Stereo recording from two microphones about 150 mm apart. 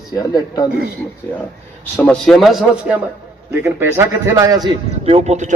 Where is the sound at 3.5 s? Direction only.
15° right (ahead or behind).